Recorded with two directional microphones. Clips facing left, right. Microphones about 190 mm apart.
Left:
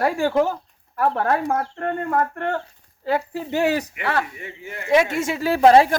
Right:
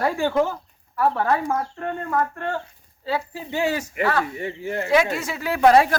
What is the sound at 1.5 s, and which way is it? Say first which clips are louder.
Speech: left 2 dB; 60° left (ahead or behind).